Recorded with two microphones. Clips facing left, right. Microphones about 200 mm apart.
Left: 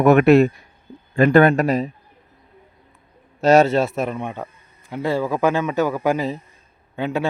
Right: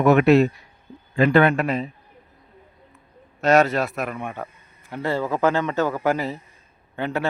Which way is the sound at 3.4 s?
30° left (ahead or behind).